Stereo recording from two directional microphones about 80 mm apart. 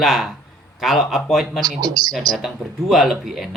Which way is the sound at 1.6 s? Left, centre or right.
Right.